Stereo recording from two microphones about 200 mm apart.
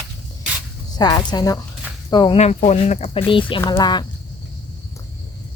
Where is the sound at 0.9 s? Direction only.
20° left (ahead or behind).